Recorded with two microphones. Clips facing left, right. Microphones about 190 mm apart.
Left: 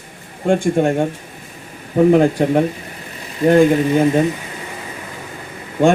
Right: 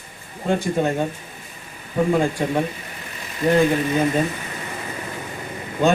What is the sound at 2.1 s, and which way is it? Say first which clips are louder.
Speech: left 8 dB; 65° left (ahead or behind).